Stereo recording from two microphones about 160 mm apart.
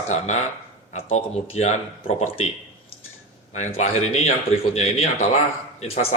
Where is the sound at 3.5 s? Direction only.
45° left (ahead or behind).